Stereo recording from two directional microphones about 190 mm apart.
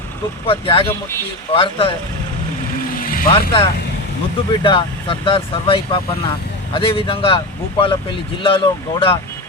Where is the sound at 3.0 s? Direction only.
50° left (ahead or behind).